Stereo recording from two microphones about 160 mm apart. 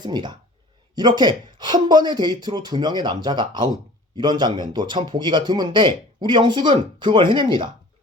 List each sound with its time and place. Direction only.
0.0 s a man's voice: 30° right (ahead or behind)